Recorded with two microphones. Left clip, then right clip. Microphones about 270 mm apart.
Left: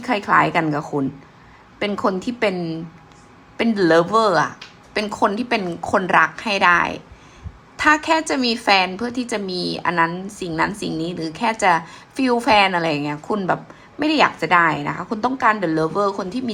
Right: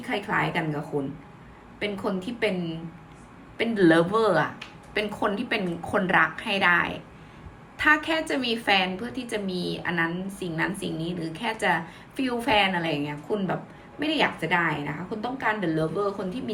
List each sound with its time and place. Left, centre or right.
0.0 s a woman's voice: centre
1.8 s a woman's voice: centre